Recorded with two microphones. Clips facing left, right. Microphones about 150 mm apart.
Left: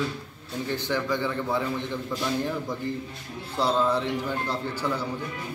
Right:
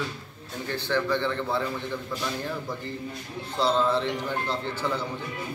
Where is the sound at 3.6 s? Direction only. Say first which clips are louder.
Even; 10° left (ahead or behind).